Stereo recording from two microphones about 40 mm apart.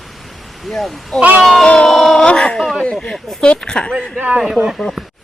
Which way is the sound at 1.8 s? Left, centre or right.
Centre.